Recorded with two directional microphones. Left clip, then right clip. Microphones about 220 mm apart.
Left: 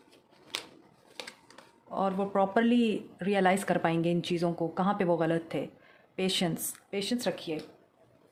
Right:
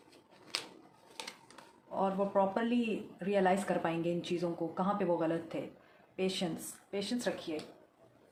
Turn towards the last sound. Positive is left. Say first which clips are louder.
# left 4 dB
turn(degrees=55)  # may be behind; listen again after turning